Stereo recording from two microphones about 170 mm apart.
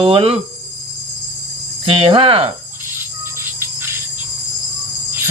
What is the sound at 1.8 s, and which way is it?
Cricket, 30° right (ahead or behind).